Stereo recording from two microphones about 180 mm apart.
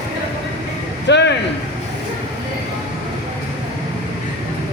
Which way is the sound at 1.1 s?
75° left (ahead or behind).